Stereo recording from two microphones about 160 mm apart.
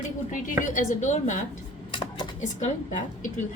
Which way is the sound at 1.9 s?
30° left (ahead or behind).